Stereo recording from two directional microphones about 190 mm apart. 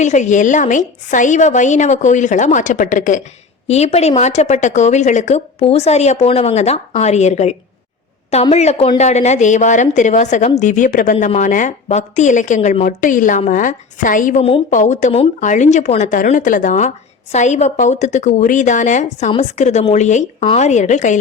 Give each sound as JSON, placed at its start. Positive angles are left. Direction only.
{"t": 0.0, "sound": "a woman's voice", "side_deg": 40}